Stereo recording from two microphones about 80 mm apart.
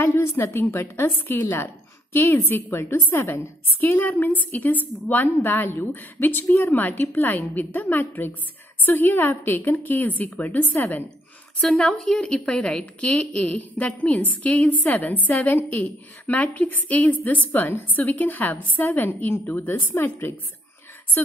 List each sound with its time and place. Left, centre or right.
0.0 s a woman's voice: left
11.7 s a woman's voice: centre; by 20.3 s left